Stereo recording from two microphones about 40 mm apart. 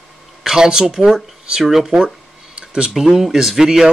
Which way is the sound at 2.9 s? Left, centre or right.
Centre.